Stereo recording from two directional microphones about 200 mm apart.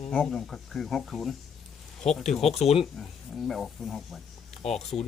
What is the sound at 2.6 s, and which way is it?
Speech, 30° left (ahead or behind).